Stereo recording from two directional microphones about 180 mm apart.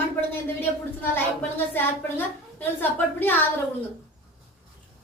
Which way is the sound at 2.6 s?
10° left (ahead or behind).